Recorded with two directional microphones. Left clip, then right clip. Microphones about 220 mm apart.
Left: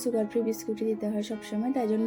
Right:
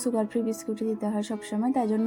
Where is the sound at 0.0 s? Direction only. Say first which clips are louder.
Even; 15° right (ahead or behind).